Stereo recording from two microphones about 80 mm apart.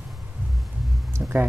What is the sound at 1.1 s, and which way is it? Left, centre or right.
Speech, right.